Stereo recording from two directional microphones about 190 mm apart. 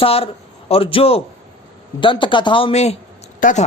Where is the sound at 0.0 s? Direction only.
30° left (ahead or behind).